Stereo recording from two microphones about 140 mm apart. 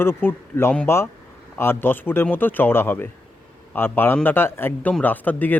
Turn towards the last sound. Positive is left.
turn(degrees=10)  # may be behind; listen again after turning